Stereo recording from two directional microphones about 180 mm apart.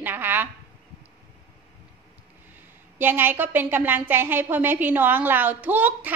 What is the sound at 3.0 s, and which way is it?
A woman's voice, 10° right (ahead or behind).